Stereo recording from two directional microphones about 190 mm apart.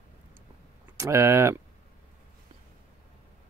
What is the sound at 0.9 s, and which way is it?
Speech, 15° right (ahead or behind).